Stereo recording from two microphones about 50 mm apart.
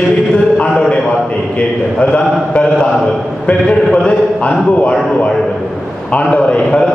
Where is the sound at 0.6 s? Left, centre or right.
Left.